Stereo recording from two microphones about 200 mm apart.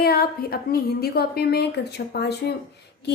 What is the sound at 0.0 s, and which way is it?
A woman's voice, 50° left (ahead or behind).